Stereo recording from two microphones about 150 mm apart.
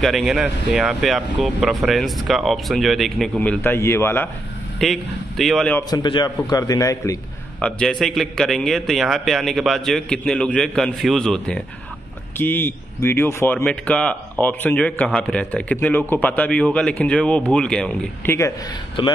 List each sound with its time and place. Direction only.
0.0 s speech: centre (ahead or behind); by 4.3 s 15° left (ahead or behind)
4.7 s speech: centre (ahead or behind)
5.9 s a man's voice: 30° left (ahead or behind)
7.6 s a man's voice: 5° left (ahead or behind)